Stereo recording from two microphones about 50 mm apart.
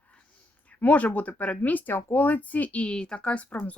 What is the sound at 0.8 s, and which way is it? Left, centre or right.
A woman's voice, left.